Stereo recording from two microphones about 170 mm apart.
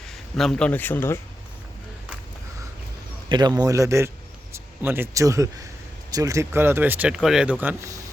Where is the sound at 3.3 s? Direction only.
25° right (ahead or behind).